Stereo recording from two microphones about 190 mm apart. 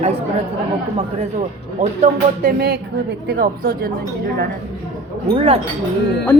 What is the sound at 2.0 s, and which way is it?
Speech, 50° right (ahead or behind).